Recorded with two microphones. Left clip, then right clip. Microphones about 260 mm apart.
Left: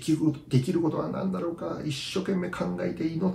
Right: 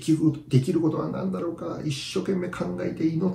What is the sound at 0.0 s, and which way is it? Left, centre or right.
Speech, centre.